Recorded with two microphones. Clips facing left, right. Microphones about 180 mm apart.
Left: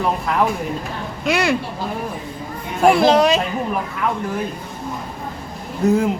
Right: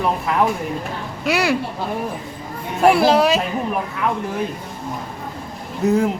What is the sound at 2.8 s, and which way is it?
Speech, 5° right (ahead or behind).